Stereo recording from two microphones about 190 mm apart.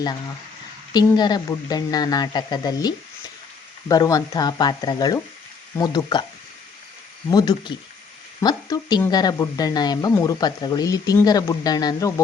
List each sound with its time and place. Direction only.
0.9 s speech: 20° left (ahead or behind)
7.3 s speech: 20° left (ahead or behind)